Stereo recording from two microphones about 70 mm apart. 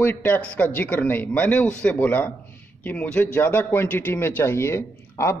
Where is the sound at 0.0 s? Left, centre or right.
Left.